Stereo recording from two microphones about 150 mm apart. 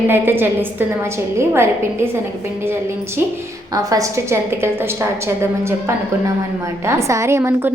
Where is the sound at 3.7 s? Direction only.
25° right (ahead or behind).